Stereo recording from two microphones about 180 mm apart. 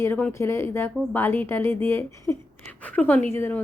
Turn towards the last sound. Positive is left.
turn(degrees=15)  # may be behind; listen again after turning